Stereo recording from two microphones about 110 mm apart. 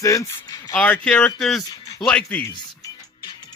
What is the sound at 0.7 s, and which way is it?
Speech, 10° left (ahead or behind).